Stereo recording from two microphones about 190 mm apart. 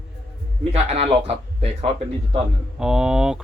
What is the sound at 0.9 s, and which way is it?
Speech, 30° right (ahead or behind).